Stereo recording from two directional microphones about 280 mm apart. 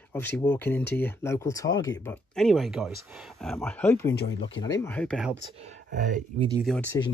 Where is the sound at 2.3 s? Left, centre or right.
Centre.